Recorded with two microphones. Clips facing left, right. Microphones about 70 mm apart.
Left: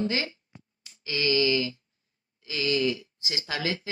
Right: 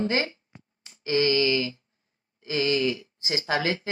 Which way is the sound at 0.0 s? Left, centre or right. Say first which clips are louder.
Right 3 dB; right.